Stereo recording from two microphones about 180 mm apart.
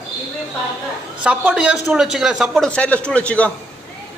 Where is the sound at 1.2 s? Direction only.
5° right (ahead or behind).